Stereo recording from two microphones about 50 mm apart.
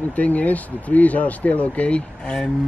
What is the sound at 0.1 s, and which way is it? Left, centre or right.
Speech, left.